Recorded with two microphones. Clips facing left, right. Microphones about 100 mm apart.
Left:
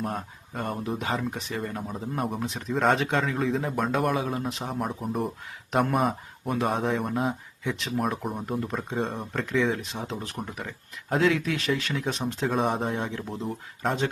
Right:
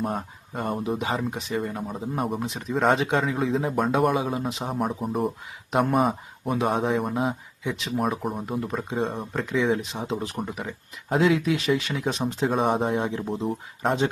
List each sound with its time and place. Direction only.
0.0 s speech: 5° right (ahead or behind)